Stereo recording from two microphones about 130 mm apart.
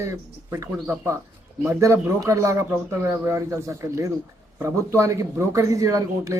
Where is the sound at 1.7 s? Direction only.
25° right (ahead or behind).